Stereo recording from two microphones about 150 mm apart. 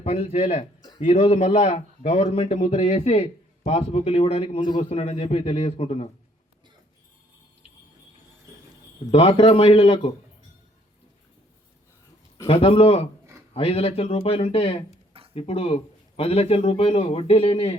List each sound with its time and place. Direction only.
0.0 s speech: 45° left (ahead or behind)
0.8 s a sound: 30° left (ahead or behind)
1.0 s speech: 45° left (ahead or behind)
9.1 s speech: 40° left (ahead or behind)
12.5 s speech: 40° left (ahead or behind)